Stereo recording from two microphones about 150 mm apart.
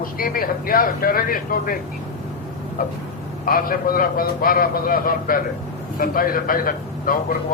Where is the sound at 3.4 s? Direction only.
70° left (ahead or behind).